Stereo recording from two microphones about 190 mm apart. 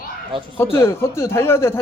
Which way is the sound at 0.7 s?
15° left (ahead or behind).